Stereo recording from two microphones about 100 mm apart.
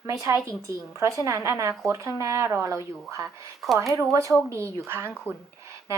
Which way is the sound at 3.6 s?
Centre (ahead or behind).